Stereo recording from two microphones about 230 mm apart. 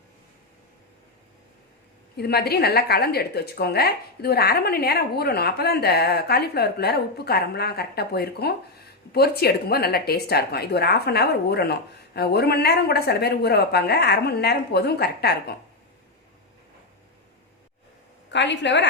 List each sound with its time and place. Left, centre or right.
2.1 s a woman's voice: left
18.3 s a woman's voice: left